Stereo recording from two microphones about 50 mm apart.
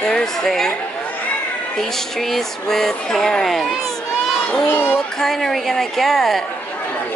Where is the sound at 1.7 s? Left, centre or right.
Centre.